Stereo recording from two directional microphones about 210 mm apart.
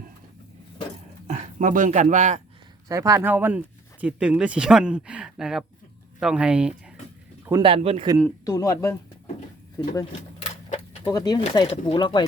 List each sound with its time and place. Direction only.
1.3 s speech: 35° right (ahead or behind)
2.9 s speech: 15° right (ahead or behind)
7.6 s speech: 25° right (ahead or behind)
8.4 s speech: 15° left (ahead or behind)